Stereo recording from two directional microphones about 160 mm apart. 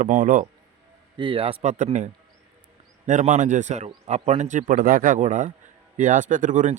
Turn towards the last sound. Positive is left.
turn(degrees=-50)  # may be behind; listen again after turning